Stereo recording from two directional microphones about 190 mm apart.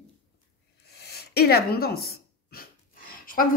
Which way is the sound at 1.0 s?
55° left (ahead or behind).